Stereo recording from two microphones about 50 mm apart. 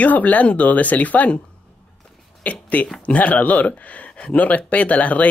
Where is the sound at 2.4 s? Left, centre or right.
Left.